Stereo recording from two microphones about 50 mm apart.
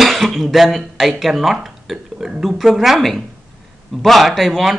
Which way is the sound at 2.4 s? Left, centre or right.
Centre.